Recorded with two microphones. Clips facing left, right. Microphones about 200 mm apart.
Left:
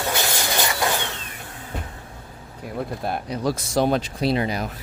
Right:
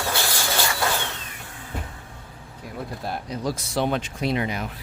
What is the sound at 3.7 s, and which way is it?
Speech, 40° left (ahead or behind).